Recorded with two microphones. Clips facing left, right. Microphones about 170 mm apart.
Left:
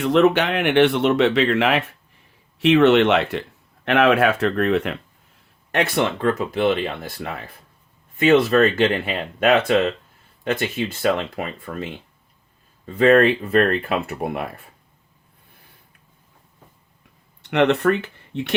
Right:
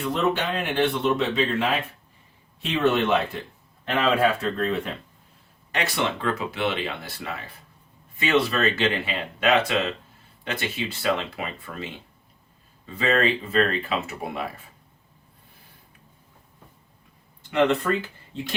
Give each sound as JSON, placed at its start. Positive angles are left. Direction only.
{"t": 0.0, "sound": "speech", "side_deg": 80}
{"t": 5.7, "sound": "speech", "side_deg": 55}
{"t": 17.4, "sound": "speech", "side_deg": 70}